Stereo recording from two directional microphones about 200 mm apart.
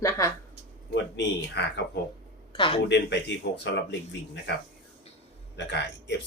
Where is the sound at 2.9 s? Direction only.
60° left (ahead or behind).